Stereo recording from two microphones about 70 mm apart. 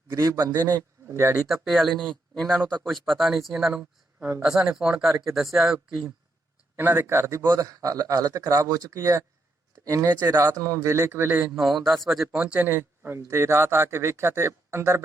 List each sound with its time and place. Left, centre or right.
0.1 s speech: right
0.4 s a man's voice: right
1.0 s speech: right
1.5 s speech: centre
4.2 s speech: right
4.4 s speech: centre
6.7 s speech: right
7.6 s speech: right
10.1 s a man's voice: right
10.6 s speech: right
11.5 s speech: centre
12.5 s speech: right
13.1 s speech: right